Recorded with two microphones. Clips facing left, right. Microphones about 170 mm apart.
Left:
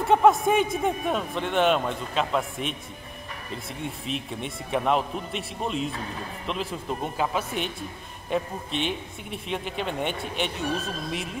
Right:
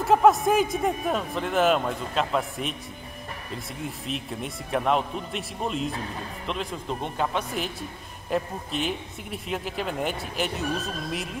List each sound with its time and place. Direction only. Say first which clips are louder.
0.0 s a man's voice: even; centre (ahead or behind)
3.8 s a man's voice: left 1 dB; centre (ahead or behind)